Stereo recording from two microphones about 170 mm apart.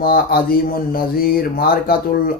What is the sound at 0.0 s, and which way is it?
Speech, 60° left (ahead or behind).